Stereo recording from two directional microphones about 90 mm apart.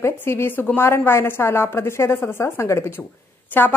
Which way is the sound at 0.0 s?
30° left (ahead or behind).